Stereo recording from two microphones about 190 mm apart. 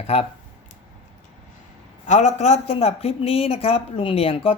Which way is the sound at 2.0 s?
40° left (ahead or behind).